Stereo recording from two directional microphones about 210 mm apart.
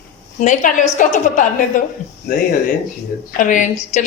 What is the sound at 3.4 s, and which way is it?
Speech, 35° left (ahead or behind).